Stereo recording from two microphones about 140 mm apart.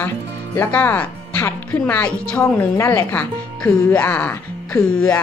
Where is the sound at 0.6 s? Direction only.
15° left (ahead or behind).